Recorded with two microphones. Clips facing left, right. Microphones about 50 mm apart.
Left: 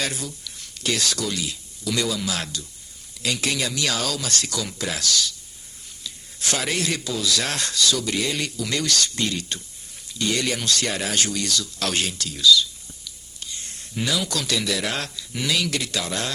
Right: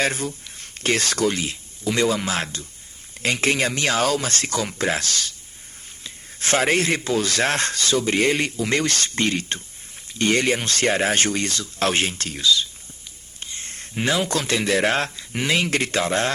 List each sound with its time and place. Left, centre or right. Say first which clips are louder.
0.0 s speech: right 6 dB; right